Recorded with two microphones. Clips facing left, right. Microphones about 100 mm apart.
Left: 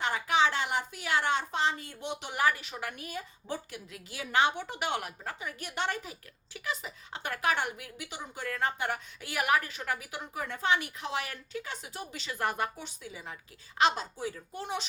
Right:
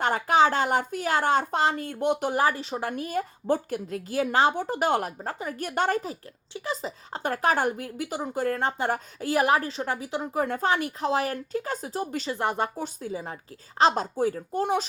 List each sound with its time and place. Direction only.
0.0 s a woman's voice: 45° right (ahead or behind); by 10.2 s 25° right (ahead or behind)
10.3 s speech: 40° right (ahead or behind)
12.4 s speech: 25° right (ahead or behind)
12.7 s a woman's voice: 40° right (ahead or behind)